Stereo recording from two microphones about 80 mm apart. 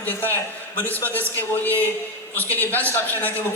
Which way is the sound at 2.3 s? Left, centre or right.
Left.